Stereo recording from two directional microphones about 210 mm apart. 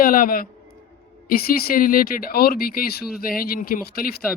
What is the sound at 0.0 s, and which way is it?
A man's voice, 40° left (ahead or behind).